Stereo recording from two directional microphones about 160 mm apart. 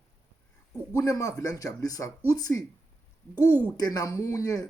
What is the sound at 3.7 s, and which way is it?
Speech, 25° left (ahead or behind).